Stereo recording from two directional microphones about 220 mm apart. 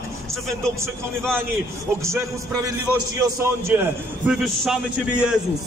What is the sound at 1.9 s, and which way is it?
A man's voice, 15° right (ahead or behind).